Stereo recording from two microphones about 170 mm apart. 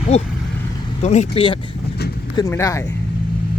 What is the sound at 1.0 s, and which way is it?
Speech, 40° left (ahead or behind).